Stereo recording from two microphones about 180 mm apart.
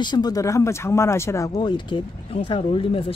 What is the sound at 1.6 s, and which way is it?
Speech, 25° left (ahead or behind).